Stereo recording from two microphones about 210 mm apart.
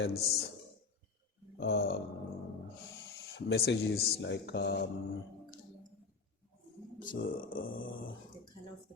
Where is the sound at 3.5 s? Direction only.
55° left (ahead or behind).